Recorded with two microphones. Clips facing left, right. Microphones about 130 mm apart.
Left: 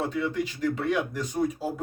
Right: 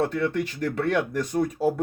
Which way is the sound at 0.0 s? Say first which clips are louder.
Right 3 dB; 65° right (ahead or behind).